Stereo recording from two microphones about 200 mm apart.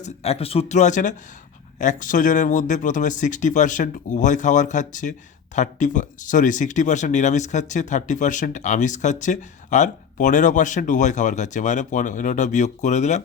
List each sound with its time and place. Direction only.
0.0 s speech: 30° left (ahead or behind)